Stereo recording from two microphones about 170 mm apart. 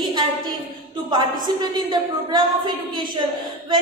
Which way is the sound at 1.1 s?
25° right (ahead or behind).